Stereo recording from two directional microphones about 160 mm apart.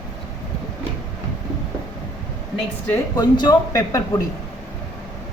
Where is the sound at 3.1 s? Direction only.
25° left (ahead or behind).